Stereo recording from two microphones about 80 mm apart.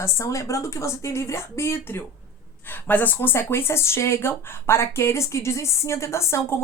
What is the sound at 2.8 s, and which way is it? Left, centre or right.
Speech, left.